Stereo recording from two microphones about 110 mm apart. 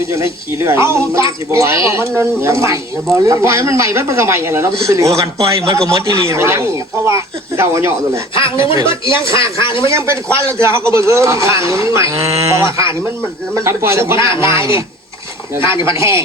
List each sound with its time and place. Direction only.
0.1 s speech: 25° right (ahead or behind)
9.1 s speech: 50° left (ahead or behind)
9.8 s speech: 25° right (ahead or behind)